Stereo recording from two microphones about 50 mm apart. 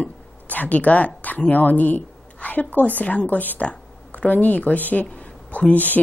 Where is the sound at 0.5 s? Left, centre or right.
Left.